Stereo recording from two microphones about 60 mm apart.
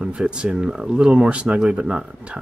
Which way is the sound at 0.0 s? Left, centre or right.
Centre.